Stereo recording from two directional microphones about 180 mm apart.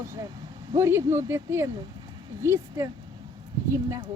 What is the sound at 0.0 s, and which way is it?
Speech, 15° right (ahead or behind).